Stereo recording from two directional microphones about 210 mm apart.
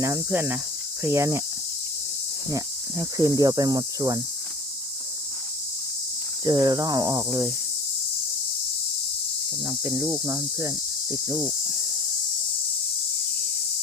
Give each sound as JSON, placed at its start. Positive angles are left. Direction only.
{"t": 0.0, "sound": "speech", "side_deg": -15}
{"t": 2.5, "sound": "speech", "side_deg": -15}
{"t": 6.4, "sound": "speech", "side_deg": -20}
{"t": 9.6, "sound": "speech", "side_deg": -10}